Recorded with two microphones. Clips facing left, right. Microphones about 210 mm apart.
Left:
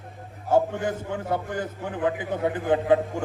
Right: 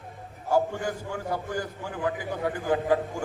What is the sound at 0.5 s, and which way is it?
A man's voice, 25° left (ahead or behind).